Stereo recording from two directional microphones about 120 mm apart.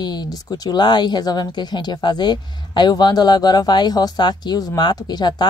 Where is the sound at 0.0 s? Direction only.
35° left (ahead or behind).